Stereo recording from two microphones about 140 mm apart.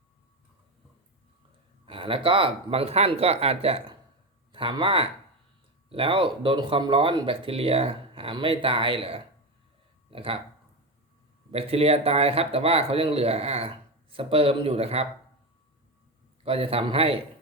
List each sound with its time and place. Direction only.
1.9 s speech: 40° right (ahead or behind)
11.5 s speech: 45° right (ahead or behind)
16.4 s speech: 45° right (ahead or behind)